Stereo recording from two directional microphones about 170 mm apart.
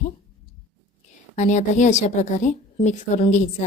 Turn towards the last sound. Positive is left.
turn(degrees=45)  # may be behind; listen again after turning